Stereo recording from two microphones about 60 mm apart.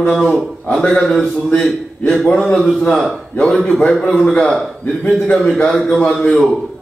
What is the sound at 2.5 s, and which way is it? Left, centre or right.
A man's voice, centre.